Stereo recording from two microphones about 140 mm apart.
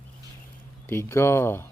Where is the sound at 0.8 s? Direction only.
15° left (ahead or behind).